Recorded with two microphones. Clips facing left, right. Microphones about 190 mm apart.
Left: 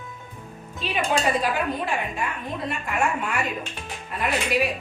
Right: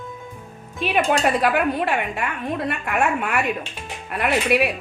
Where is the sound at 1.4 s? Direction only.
65° right (ahead or behind).